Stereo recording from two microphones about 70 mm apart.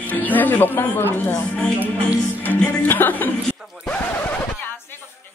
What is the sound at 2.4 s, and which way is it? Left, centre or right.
Music, left.